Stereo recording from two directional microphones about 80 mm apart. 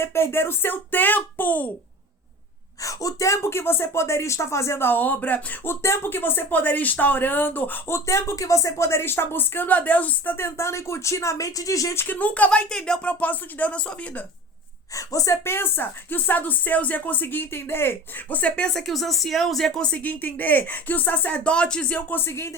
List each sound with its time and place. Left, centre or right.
0.0 s a woman's voice: left
2.8 s a woman's voice: left
12.0 s speech: centre
14.9 s a woman's voice: left
15.4 s a woman's voice: left
22.2 s speech: left